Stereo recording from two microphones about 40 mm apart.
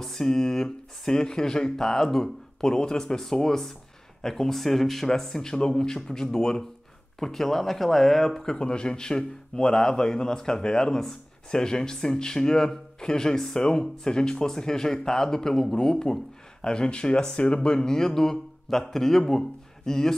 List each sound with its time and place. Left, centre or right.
0.0 s a man's voice: centre
8.5 s a man's voice: left
17.7 s a man's voice: centre